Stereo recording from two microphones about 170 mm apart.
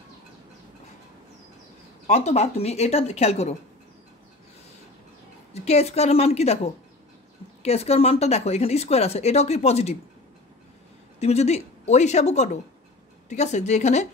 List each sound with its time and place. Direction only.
2.0 s speech: 40° left (ahead or behind)
5.5 s speech: 40° left (ahead or behind)
11.1 s a woman's voice: 40° left (ahead or behind)